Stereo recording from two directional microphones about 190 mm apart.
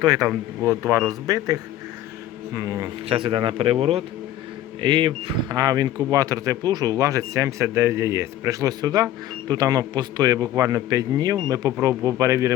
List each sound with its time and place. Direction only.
0.0 s a man's voice: 20° right (ahead or behind)
2.6 s speech: 15° right (ahead or behind)
3.1 s a man's voice: 25° right (ahead or behind)